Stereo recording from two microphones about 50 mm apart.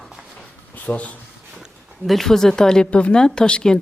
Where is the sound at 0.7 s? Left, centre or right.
Left.